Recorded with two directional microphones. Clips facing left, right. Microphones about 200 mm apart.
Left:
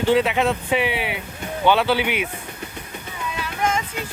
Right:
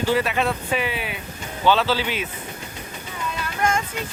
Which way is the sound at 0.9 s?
75° left (ahead or behind).